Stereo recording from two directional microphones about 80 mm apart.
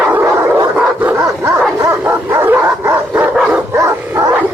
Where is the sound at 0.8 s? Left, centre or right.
Right.